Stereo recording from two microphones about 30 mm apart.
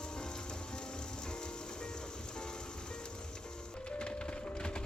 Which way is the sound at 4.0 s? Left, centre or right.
Left.